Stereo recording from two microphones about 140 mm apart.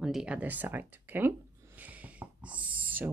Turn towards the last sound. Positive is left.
turn(degrees=-10)  # may be behind; listen again after turning